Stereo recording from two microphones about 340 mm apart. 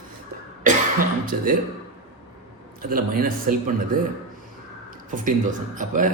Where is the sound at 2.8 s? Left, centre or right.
Right.